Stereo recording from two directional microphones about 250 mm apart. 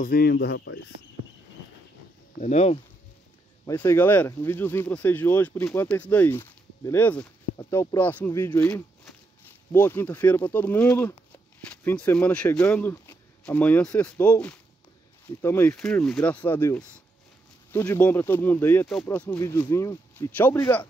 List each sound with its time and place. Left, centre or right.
0.0 s speech: left
2.4 s speech: left
3.6 s speech: centre